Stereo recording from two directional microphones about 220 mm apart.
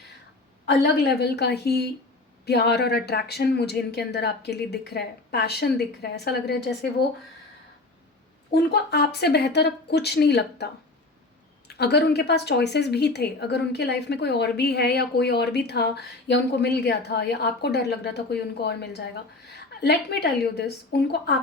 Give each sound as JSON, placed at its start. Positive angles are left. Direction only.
{"t": 0.6, "sound": "a woman's voice", "side_deg": 50}
{"t": 8.7, "sound": "a woman's voice", "side_deg": 50}
{"t": 11.7, "sound": "a woman's voice", "side_deg": 50}